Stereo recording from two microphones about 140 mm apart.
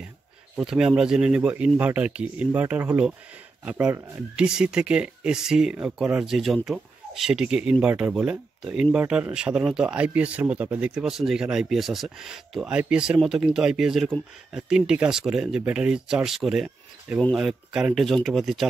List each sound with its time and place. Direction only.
0.6 s speech: 5° right (ahead or behind)
4.4 s speech: 5° right (ahead or behind)